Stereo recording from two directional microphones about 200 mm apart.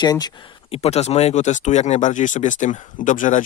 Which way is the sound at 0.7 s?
30° left (ahead or behind).